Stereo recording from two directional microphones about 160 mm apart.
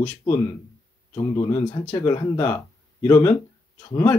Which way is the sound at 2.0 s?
20° left (ahead or behind).